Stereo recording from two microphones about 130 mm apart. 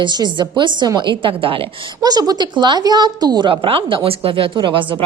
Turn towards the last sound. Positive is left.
turn(degrees=-40)  # may be behind; listen again after turning